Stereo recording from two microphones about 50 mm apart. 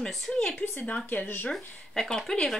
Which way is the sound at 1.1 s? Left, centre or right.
Left.